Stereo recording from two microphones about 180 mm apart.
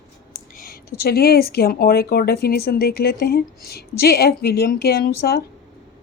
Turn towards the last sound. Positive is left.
turn(degrees=60)  # may be behind; listen again after turning